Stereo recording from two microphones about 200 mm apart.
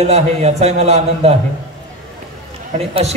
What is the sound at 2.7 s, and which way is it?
Speech, 30° right (ahead or behind).